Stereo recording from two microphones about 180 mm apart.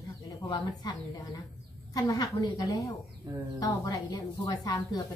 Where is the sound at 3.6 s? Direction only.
20° left (ahead or behind).